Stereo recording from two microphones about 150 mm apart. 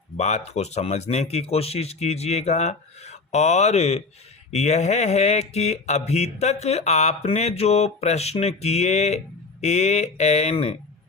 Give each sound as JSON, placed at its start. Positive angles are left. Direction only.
{"t": 0.2, "sound": "mantra", "side_deg": 50}